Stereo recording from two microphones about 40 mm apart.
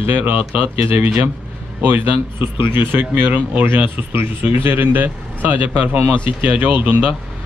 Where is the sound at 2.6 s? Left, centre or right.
Right.